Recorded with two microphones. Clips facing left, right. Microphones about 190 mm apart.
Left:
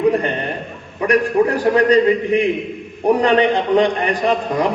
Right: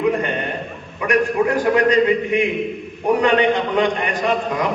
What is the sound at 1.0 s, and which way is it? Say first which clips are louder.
A man's voice: left 2 dB; 35° left (ahead or behind).